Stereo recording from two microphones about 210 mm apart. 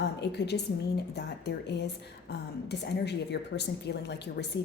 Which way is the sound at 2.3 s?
55° left (ahead or behind).